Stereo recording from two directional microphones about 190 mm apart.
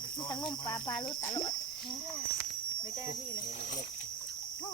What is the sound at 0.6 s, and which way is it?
Speech, 20° left (ahead or behind).